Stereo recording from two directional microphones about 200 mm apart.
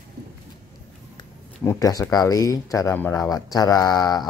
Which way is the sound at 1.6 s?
15° left (ahead or behind).